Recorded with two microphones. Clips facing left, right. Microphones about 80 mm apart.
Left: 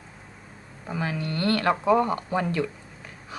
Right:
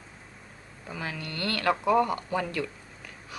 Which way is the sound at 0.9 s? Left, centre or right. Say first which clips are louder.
Left 6 dB; left.